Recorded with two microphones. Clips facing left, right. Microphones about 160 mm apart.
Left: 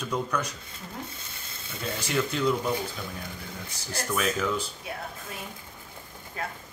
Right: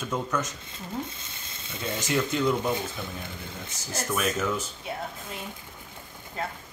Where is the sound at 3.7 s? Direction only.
30° left (ahead or behind).